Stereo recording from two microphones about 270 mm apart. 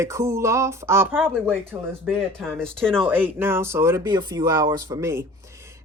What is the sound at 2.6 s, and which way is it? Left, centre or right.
Speech, centre.